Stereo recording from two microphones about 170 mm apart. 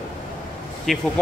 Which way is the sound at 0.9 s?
Centre (ahead or behind).